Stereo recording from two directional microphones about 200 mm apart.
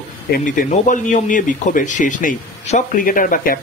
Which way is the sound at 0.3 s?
40° left (ahead or behind).